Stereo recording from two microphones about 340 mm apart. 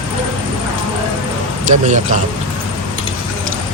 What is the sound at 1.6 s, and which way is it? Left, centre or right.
Speech, right.